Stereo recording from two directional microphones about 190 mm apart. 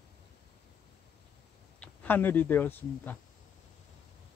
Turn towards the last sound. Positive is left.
turn(degrees=10)  # may be behind; listen again after turning